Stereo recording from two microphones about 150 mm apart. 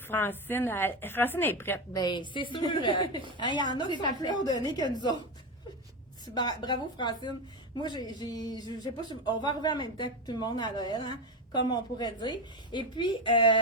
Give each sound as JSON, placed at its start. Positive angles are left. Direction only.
{"t": 0.1, "sound": "a woman's voice", "side_deg": 15}
{"t": 2.0, "sound": "a woman's voice", "side_deg": 30}
{"t": 6.3, "sound": "a woman's voice", "side_deg": 30}